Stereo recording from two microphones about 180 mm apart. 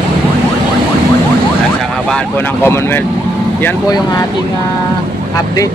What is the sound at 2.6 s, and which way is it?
Speech, 15° left (ahead or behind).